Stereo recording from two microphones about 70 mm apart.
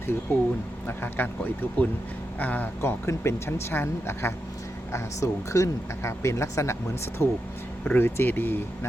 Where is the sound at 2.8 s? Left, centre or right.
Left.